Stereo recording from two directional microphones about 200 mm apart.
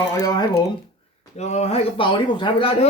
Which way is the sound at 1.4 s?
35° left (ahead or behind).